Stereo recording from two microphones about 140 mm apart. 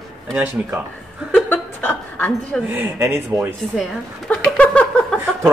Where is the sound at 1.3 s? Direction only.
15° left (ahead or behind).